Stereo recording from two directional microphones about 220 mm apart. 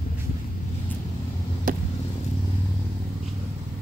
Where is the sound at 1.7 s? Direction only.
40° right (ahead or behind).